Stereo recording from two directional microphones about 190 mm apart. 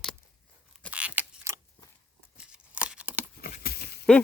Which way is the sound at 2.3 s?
5° right (ahead or behind).